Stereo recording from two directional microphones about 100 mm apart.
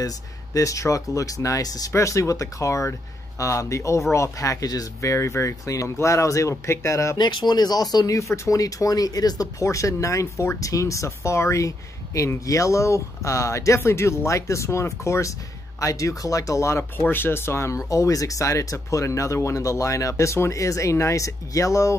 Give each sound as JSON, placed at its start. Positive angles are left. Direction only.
{"t": 0.0, "sound": "speech", "side_deg": 35}
{"t": 7.2, "sound": "speech", "side_deg": 50}